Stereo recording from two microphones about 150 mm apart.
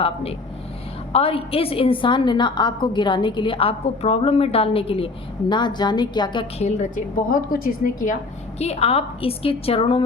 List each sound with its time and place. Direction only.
0.0 s a woman's voice: 40° left (ahead or behind)
6.6 s a woman's voice: 50° left (ahead or behind); by 8.1 s 65° left (ahead or behind)
8.5 s a woman's voice: 45° left (ahead or behind)